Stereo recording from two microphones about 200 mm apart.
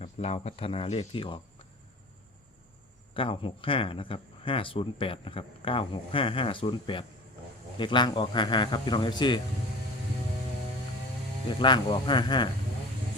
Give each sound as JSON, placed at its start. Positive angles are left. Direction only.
{"t": 0.0, "sound": "speech", "side_deg": 30}
{"t": 3.2, "sound": "speech", "side_deg": 25}
{"t": 11.4, "sound": "speech", "side_deg": 25}